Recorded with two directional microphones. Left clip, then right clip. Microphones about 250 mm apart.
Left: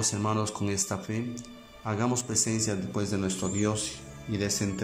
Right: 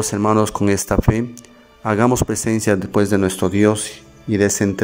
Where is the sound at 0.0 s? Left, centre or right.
Right.